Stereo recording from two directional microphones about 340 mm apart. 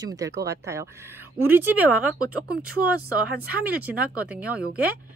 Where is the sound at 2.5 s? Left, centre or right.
Right.